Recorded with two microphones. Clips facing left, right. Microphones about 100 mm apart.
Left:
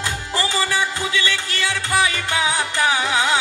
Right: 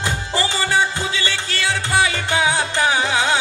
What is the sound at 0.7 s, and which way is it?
Music, 25° right (ahead or behind).